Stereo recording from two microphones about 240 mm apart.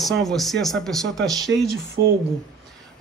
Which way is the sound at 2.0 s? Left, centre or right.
Right.